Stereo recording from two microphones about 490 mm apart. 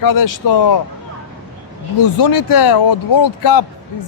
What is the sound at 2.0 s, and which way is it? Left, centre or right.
Speech, left.